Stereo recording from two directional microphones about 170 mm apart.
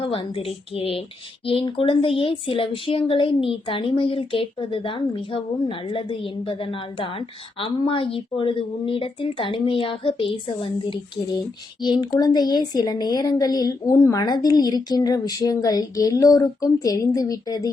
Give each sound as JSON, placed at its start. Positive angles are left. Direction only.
{"t": 0.0, "sound": "speech", "side_deg": 35}